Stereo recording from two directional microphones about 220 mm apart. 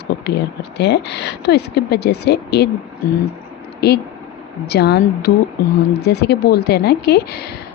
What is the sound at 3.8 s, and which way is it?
Speech, 50° left (ahead or behind).